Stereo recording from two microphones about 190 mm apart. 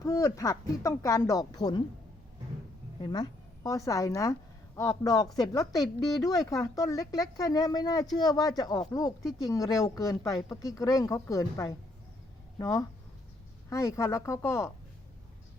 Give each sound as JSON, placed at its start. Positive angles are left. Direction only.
{"t": 0.0, "sound": "speech", "side_deg": 15}
{"t": 3.0, "sound": "a woman's voice", "side_deg": 20}